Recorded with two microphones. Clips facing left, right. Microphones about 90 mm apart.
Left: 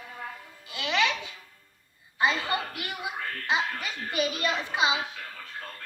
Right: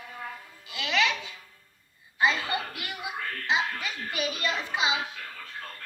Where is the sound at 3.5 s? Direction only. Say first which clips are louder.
Even; 25° left (ahead or behind).